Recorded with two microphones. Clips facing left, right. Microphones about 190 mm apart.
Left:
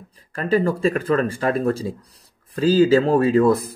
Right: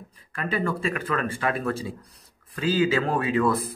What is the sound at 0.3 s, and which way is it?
Speech, 35° left (ahead or behind).